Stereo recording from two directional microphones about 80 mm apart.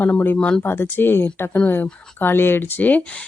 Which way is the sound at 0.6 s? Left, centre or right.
Left.